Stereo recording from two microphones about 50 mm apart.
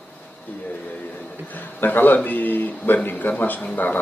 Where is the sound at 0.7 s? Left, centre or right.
Left.